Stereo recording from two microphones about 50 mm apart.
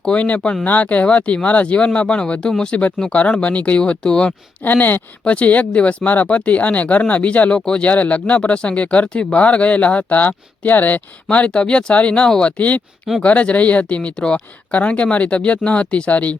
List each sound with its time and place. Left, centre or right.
0.0 s speech: left
3.1 s speech: left
4.6 s speech: left
5.2 s speech: left
7.9 s speech: left